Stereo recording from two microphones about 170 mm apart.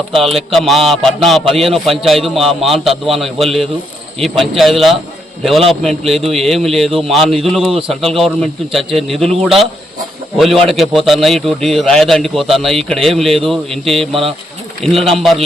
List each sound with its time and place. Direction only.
0.1 s a man's voice: centre (ahead or behind)
14.1 s speech: 35° right (ahead or behind)
14.8 s a man's voice: centre (ahead or behind)